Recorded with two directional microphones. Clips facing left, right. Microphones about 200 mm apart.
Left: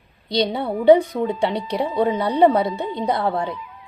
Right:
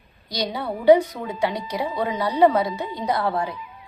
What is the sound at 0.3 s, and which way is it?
Speech, 25° left (ahead or behind).